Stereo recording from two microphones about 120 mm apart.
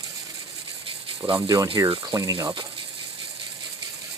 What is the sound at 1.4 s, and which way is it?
Speech, 30° right (ahead or behind).